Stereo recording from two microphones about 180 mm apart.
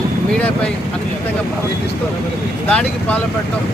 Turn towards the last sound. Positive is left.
turn(degrees=5)  # may be behind; listen again after turning